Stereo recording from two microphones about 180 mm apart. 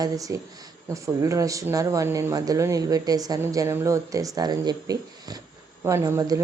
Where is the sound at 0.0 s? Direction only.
20° right (ahead or behind).